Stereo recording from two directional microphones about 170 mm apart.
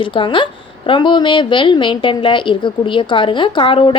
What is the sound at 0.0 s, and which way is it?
A woman's voice, 30° left (ahead or behind).